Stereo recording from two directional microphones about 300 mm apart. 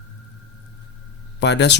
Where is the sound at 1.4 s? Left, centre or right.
Left.